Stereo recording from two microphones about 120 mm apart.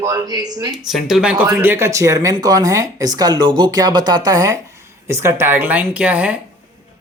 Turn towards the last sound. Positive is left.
turn(degrees=-10)  # may be behind; listen again after turning